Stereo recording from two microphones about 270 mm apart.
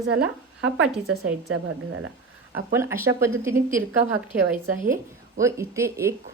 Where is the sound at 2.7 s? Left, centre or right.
Centre.